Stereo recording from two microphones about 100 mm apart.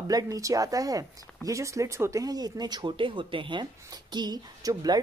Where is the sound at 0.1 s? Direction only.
35° right (ahead or behind).